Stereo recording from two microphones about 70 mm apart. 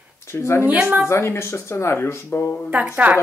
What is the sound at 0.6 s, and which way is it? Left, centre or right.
Speech, right.